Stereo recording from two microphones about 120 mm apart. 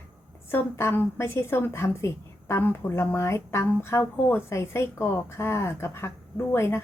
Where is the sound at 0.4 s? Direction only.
20° left (ahead or behind).